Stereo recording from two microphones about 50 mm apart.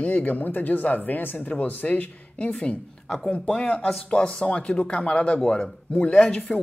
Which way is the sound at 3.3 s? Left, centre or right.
Left.